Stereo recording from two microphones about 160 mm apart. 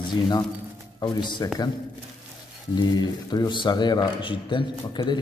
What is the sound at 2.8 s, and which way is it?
A man's voice, 25° left (ahead or behind).